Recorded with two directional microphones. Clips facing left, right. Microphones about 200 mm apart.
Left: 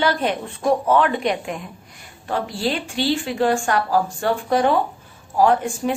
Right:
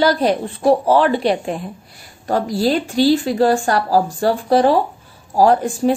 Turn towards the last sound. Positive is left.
turn(degrees=-35)  # may be behind; listen again after turning